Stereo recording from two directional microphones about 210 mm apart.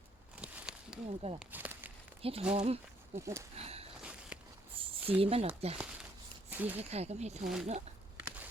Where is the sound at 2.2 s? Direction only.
25° right (ahead or behind).